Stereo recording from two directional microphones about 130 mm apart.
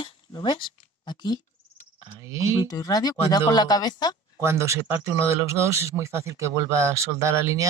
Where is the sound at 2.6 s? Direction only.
30° left (ahead or behind).